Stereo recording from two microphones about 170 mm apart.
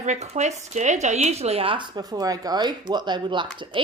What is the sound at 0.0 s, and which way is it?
A woman's voice, 45° right (ahead or behind).